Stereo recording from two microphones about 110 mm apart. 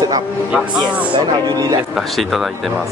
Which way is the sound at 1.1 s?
35° right (ahead or behind).